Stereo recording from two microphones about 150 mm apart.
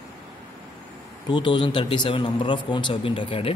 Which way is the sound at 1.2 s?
30° left (ahead or behind).